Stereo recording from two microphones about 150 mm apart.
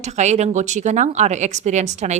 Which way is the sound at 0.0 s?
50° right (ahead or behind).